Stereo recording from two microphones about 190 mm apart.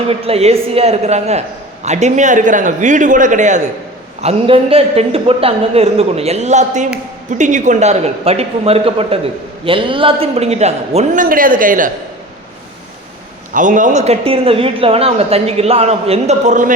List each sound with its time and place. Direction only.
0.1 s a man's voice: 30° right (ahead or behind)
13.5 s a man's voice: 40° right (ahead or behind)